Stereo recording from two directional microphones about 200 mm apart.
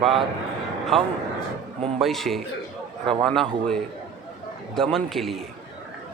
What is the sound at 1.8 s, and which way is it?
Speech, 30° right (ahead or behind).